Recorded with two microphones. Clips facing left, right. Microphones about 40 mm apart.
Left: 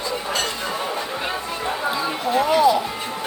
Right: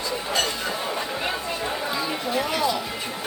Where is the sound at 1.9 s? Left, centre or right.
Left.